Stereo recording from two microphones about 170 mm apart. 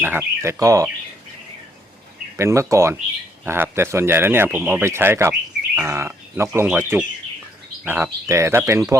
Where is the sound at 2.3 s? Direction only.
15° right (ahead or behind).